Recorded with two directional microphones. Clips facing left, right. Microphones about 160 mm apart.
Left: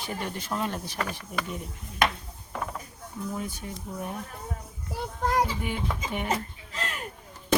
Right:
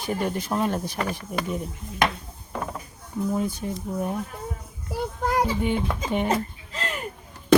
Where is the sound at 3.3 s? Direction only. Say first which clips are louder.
Right 9 dB; 35° right (ahead or behind).